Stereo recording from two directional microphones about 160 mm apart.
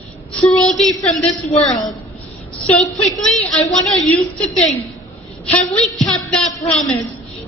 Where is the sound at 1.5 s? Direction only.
45° left (ahead or behind).